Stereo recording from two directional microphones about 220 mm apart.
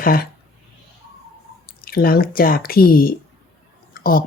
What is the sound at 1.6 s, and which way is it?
Speech, 40° left (ahead or behind).